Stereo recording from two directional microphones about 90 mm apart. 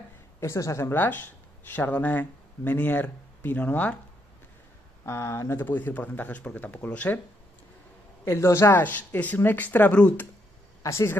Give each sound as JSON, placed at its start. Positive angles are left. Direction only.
{"t": 0.4, "sound": "speech", "side_deg": 35}
{"t": 5.0, "sound": "speech", "side_deg": 30}
{"t": 8.3, "sound": "speech", "side_deg": 30}
{"t": 10.8, "sound": "speech", "side_deg": 30}